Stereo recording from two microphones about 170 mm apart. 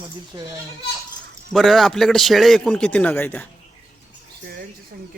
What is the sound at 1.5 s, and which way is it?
A man's voice, centre (ahead or behind).